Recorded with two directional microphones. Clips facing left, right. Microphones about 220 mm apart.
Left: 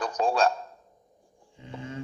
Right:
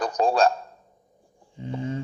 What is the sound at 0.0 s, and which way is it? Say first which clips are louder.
Speech: right 4 dB; 40° right (ahead or behind).